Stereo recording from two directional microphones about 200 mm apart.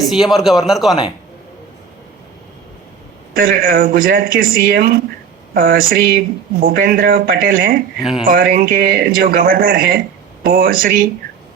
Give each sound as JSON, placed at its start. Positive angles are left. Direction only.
{"t": 0.1, "sound": "a man's voice", "side_deg": 0}
{"t": 3.3, "sound": "speech", "side_deg": -45}
{"t": 7.9, "sound": "a man's voice", "side_deg": 0}
{"t": 8.3, "sound": "speech", "side_deg": -45}